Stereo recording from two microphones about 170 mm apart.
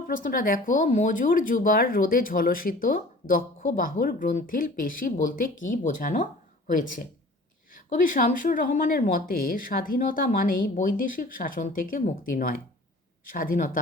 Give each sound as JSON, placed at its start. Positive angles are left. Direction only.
{"t": 0.1, "sound": "speech", "side_deg": 55}